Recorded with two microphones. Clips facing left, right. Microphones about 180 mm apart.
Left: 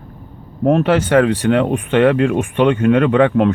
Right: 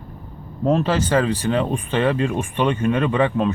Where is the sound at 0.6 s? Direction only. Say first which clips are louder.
Left 5 dB; 65° left (ahead or behind).